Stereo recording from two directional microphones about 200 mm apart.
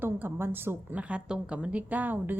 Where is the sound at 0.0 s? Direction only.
10° right (ahead or behind).